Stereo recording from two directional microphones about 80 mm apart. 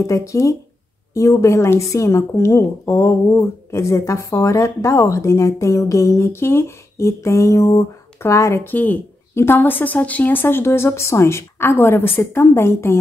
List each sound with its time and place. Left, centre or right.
0.0 s a woman's voice: left
8.7 s a woman's voice: left
9.3 s a woman's voice: left